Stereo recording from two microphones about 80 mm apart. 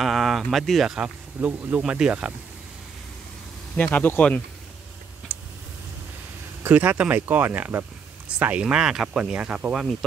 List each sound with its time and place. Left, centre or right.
0.0 s speech: centre
0.9 s speech: centre
3.7 s speech: centre
6.6 s speech: right